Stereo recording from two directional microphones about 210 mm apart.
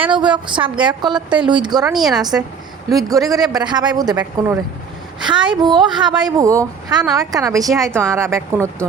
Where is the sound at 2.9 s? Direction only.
15° right (ahead or behind).